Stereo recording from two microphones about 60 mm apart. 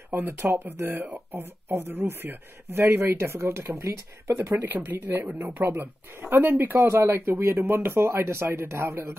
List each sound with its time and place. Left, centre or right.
0.3 s speech: right
4.6 s speech: right
7.0 s speech: right